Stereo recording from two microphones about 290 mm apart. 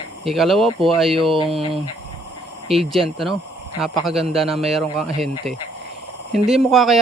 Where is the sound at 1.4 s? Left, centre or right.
Centre.